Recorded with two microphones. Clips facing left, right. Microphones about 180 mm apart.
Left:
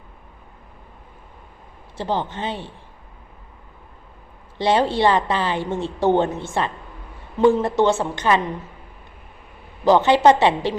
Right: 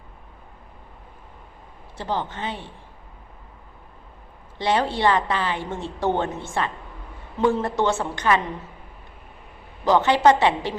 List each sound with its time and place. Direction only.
2.0 s a woman's voice: 25° left (ahead or behind)
4.5 s a woman's voice: 30° left (ahead or behind)
9.8 s a woman's voice: 25° left (ahead or behind)